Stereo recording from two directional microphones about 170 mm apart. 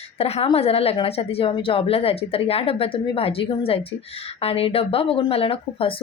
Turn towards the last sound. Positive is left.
turn(degrees=35)  # may be behind; listen again after turning